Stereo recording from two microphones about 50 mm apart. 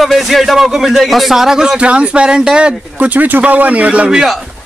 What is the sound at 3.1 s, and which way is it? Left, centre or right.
Speech, right.